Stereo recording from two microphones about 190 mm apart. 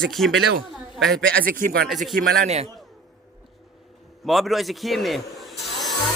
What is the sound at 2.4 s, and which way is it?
Speech, 35° right (ahead or behind).